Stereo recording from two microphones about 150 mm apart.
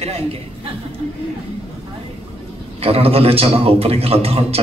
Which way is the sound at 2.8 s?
40° right (ahead or behind).